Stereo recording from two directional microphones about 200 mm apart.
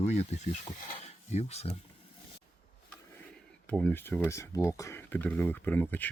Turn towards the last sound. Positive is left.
turn(degrees=10)  # may be behind; listen again after turning